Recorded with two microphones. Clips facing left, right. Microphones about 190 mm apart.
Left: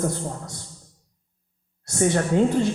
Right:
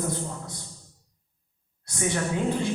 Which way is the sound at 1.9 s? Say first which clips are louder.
Left 7 dB; 50° left (ahead or behind).